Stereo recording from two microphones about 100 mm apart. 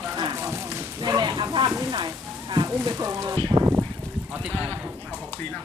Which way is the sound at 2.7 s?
35° right (ahead or behind).